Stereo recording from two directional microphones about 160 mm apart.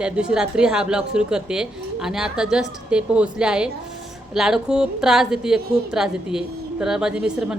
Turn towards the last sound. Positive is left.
turn(degrees=-5)  # may be behind; listen again after turning